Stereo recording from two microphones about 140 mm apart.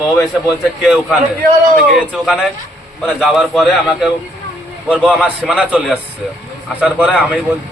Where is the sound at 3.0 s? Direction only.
Centre (ahead or behind).